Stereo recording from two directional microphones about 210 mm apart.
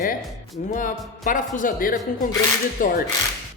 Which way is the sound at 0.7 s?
40° left (ahead or behind).